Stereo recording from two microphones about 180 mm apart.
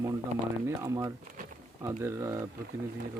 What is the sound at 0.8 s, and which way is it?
Speech, 20° right (ahead or behind).